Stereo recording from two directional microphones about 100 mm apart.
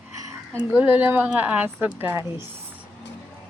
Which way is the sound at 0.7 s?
20° right (ahead or behind).